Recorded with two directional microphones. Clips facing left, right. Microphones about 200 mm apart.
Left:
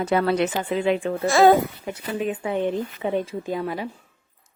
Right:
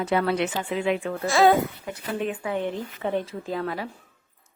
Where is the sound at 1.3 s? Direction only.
45° left (ahead or behind).